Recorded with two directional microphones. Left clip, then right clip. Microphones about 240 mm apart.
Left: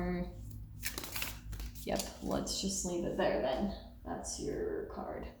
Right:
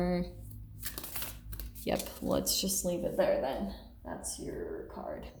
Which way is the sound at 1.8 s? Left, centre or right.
Right.